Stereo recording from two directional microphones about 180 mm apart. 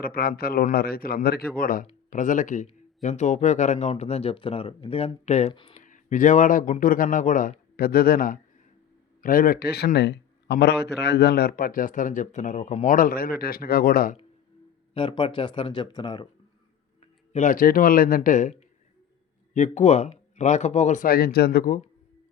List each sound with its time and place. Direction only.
0.0 s a man's voice: 55° left (ahead or behind)
14.9 s speech: 30° left (ahead or behind)
17.3 s speech: 45° left (ahead or behind)